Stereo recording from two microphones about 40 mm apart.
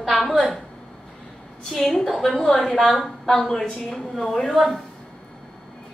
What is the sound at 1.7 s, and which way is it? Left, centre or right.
Speech, centre.